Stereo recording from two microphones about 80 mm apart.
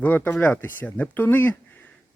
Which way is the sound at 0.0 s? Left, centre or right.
Left.